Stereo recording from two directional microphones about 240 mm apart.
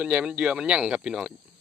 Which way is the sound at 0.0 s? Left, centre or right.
Centre.